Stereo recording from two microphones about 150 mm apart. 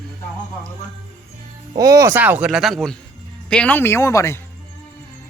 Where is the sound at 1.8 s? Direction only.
20° right (ahead or behind).